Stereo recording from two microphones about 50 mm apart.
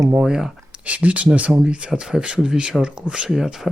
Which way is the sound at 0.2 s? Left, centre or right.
Centre.